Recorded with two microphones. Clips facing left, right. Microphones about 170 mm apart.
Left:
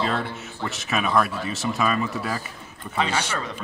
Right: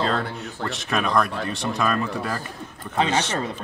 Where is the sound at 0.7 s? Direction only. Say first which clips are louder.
Right 1 dB; centre (ahead or behind).